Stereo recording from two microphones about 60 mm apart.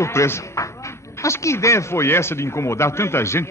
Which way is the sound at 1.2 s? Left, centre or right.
Left.